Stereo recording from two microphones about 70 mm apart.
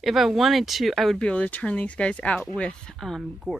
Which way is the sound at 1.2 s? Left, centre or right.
Centre.